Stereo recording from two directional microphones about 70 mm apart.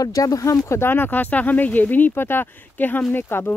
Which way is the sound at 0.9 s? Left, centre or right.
Left.